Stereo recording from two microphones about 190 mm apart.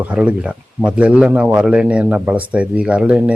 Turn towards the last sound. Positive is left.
turn(degrees=-5)  # may be behind; listen again after turning